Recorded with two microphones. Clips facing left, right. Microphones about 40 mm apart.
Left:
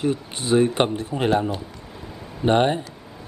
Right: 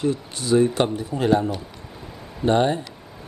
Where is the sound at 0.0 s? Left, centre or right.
Left.